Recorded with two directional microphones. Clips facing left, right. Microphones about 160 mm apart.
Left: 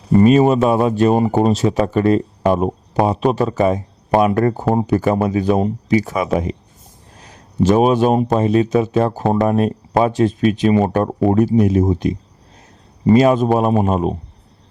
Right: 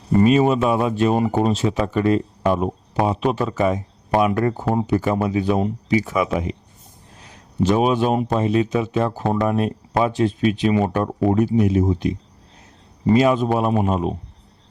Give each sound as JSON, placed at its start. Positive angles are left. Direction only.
{"t": 0.2, "sound": "speech", "side_deg": 40}
{"t": 7.6, "sound": "speech", "side_deg": 45}
{"t": 13.1, "sound": "speech", "side_deg": 45}